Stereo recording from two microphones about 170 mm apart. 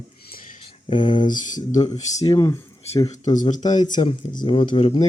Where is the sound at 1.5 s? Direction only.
20° left (ahead or behind).